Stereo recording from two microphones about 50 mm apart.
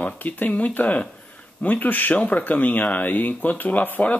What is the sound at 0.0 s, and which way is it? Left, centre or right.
Speech, left.